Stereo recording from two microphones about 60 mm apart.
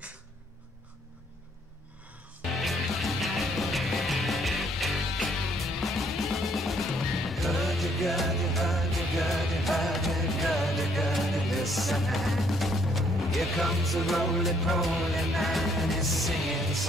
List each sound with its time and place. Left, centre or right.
2.6 s music: centre